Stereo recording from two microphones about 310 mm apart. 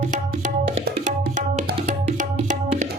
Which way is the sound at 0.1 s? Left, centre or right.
Right.